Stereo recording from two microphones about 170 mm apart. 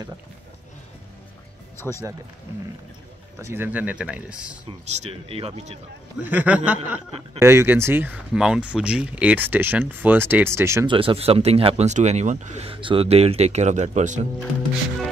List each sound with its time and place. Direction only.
1.8 s speech: 15° left (ahead or behind)
3.3 s speech: 15° right (ahead or behind)
4.6 s speech: 35° right (ahead or behind)
6.2 s speech: 10° right (ahead or behind)
10.9 s speech: 30° right (ahead or behind)